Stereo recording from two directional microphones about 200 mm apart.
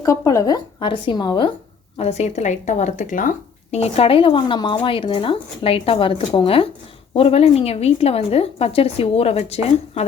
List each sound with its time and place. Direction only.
0.0 s a woman's voice: 15° left (ahead or behind)